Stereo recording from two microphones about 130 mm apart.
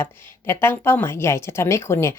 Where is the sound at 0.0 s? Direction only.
20° left (ahead or behind).